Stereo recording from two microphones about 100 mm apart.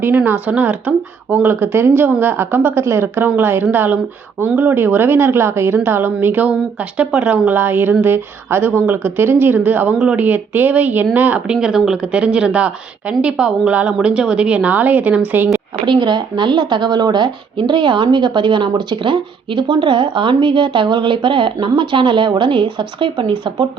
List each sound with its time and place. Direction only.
0.3 s a woman's voice: 15° right (ahead or behind)
15.9 s a woman's voice: 50° right (ahead or behind)